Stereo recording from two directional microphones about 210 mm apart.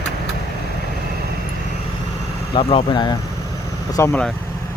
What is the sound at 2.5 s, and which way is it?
Speech, 25° left (ahead or behind).